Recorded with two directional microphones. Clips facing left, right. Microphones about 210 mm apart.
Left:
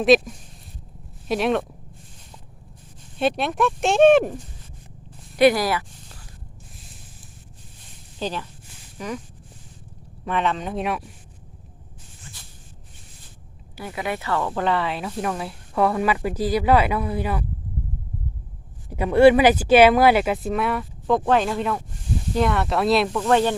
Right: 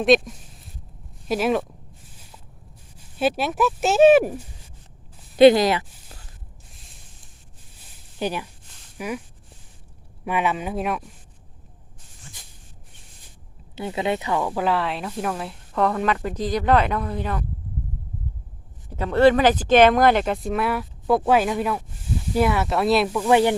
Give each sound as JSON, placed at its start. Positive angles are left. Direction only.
{"t": 0.0, "sound": "speech", "side_deg": 0}
{"t": 3.2, "sound": "speech", "side_deg": -5}
{"t": 5.4, "sound": "speech", "side_deg": -25}
{"t": 8.2, "sound": "speech", "side_deg": -10}
{"t": 10.2, "sound": "speech", "side_deg": -10}
{"t": 13.7, "sound": "speech", "side_deg": -25}
{"t": 18.9, "sound": "speech", "side_deg": 10}